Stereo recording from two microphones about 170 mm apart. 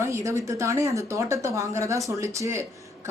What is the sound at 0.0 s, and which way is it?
Speech, 15° right (ahead or behind).